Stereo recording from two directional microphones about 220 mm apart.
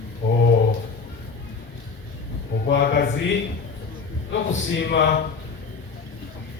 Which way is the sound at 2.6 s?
55° left (ahead or behind).